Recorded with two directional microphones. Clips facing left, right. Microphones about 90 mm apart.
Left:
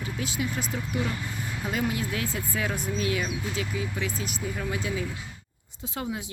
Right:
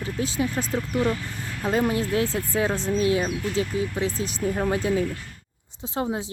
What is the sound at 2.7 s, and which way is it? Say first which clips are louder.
Speech: right 6 dB; 10° left (ahead or behind).